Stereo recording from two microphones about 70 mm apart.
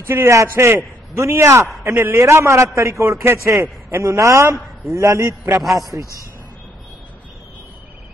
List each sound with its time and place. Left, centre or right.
0.3 s a man's voice: right
5.8 s a man's voice: right